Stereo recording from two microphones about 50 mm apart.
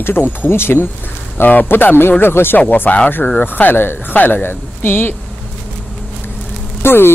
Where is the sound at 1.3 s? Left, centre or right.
Left.